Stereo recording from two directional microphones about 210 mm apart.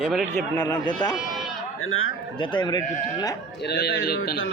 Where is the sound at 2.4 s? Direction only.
20° left (ahead or behind).